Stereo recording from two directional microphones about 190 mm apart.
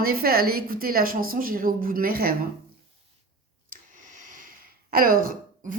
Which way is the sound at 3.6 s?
45° right (ahead or behind).